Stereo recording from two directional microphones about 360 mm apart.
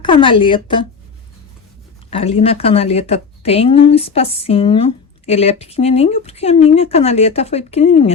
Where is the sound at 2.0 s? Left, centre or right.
Centre.